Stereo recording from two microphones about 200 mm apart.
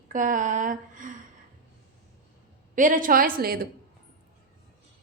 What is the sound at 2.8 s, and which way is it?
Speech, 40° right (ahead or behind).